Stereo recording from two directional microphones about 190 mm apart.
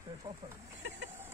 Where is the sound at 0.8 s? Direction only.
70° right (ahead or behind).